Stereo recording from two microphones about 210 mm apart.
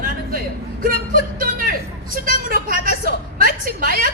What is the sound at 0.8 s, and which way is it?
A woman's voice, 40° right (ahead or behind).